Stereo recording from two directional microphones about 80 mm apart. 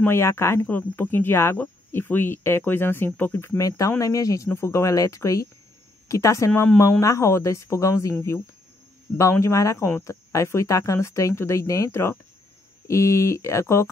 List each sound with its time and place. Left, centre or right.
0.0 s speech: left
3.6 s speech: left
4.5 s speech: left